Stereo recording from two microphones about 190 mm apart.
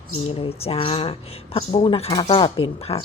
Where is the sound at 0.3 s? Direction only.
30° left (ahead or behind).